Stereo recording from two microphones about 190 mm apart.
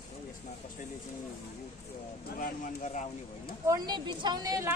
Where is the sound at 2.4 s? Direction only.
45° left (ahead or behind).